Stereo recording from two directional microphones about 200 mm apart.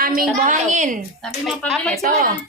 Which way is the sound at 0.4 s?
40° right (ahead or behind).